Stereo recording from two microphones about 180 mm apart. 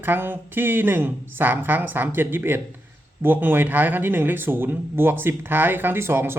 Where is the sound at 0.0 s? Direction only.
10° right (ahead or behind).